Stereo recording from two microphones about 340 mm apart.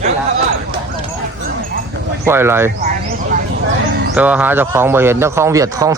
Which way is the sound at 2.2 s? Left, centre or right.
Centre.